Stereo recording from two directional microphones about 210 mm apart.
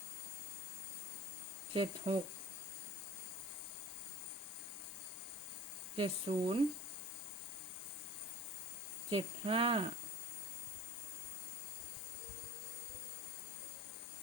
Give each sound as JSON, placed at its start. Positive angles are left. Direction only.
{"t": 1.7, "sound": "speech", "side_deg": -25}
{"t": 6.0, "sound": "speech", "side_deg": -25}
{"t": 9.0, "sound": "speech", "side_deg": -25}